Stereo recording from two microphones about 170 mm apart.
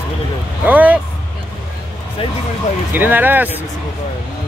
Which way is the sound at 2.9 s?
10° right (ahead or behind).